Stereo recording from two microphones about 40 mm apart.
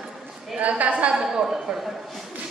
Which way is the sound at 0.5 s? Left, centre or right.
Right.